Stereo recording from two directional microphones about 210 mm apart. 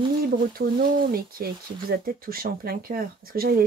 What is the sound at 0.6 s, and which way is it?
Speech, 45° right (ahead or behind).